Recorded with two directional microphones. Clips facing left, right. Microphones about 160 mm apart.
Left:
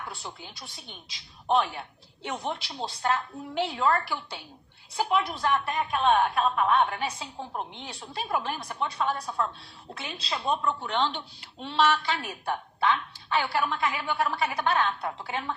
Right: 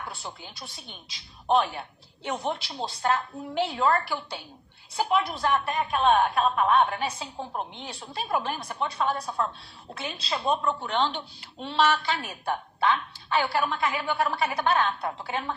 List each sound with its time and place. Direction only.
0.0 s a woman's voice: 40° right (ahead or behind)